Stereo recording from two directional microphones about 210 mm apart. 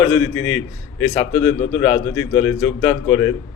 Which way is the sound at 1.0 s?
20° left (ahead or behind).